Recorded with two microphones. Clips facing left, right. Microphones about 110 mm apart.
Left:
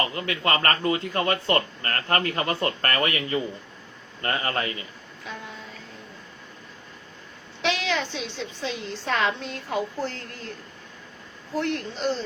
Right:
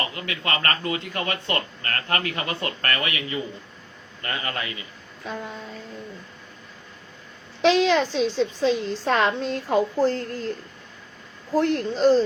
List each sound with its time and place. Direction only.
0.0 s speech: 35° left (ahead or behind)
7.6 s a woman's voice: 35° right (ahead or behind)
11.5 s a woman's voice: 35° right (ahead or behind)